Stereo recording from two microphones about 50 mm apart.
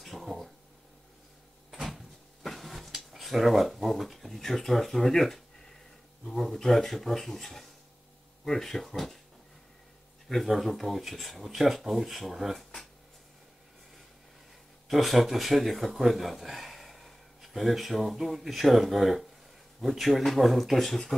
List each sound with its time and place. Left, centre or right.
0.0 s a sound: centre
1.7 s drawer open or close: centre
6.2 s speech: centre
10.2 s speech: centre
14.9 s speech: centre